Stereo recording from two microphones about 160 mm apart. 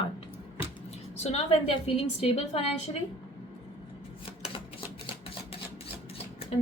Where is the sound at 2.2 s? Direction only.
40° left (ahead or behind).